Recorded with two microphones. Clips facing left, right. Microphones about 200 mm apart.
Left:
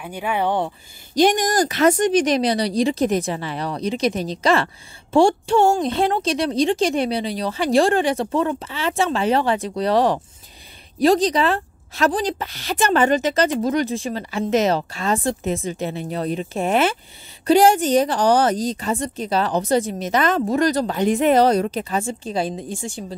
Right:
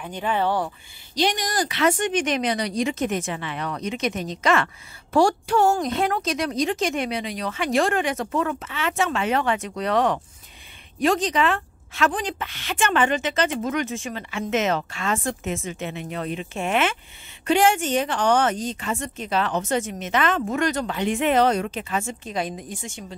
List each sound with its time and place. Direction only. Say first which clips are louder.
0.0 s speech: left 1 dB; 10° left (ahead or behind)
1.1 s a woman's voice: left 7 dB; 45° left (ahead or behind)